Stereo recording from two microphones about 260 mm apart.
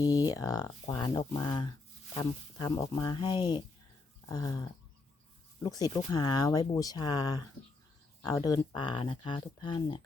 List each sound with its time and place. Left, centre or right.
0.0 s speech: centre